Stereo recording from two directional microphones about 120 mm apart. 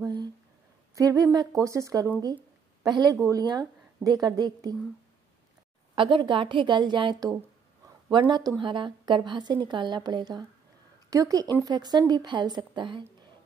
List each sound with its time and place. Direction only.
0.0 s a sound: 35° right (ahead or behind)
0.9 s a woman's voice: 30° right (ahead or behind)
5.9 s a woman's voice: 45° right (ahead or behind)